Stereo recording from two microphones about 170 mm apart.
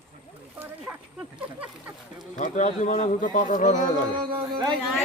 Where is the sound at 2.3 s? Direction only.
45° left (ahead or behind).